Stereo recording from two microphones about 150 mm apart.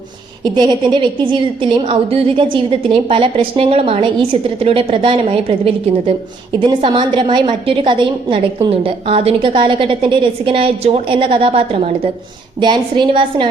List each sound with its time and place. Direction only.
0.5 s a woman's voice: 30° right (ahead or behind)